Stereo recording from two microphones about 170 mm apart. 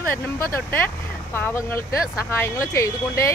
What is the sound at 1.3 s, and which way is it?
Speech, 15° left (ahead or behind).